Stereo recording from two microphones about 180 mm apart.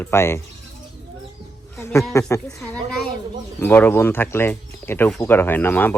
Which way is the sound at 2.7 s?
5° left (ahead or behind).